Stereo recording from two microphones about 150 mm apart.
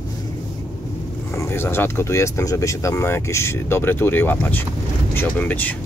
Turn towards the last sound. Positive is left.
turn(degrees=10)  # may be behind; listen again after turning